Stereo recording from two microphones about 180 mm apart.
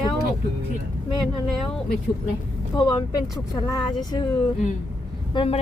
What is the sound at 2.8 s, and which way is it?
Speech, 25° left (ahead or behind).